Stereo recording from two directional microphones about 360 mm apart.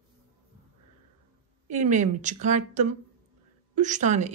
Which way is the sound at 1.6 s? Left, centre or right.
Centre.